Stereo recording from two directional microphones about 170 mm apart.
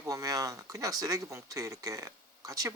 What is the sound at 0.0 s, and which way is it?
Speech, 20° right (ahead or behind).